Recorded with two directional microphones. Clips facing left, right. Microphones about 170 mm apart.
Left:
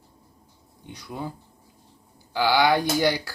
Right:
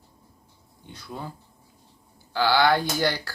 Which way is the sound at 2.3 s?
15° left (ahead or behind).